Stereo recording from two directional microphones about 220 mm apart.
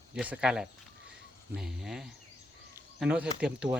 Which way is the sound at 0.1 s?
5° right (ahead or behind).